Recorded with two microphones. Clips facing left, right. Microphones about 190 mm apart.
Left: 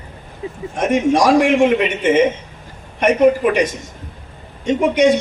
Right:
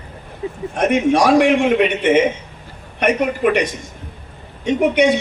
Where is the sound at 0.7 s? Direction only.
65° right (ahead or behind).